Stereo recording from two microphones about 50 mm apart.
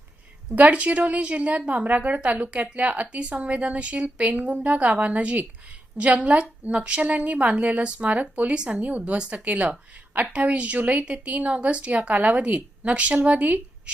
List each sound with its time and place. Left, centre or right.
0.5 s a woman's voice: right
8.5 s speech: centre
8.8 s a woman's voice: right